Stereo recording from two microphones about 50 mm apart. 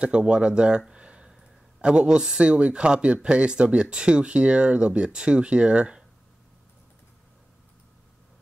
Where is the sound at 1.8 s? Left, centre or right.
Right.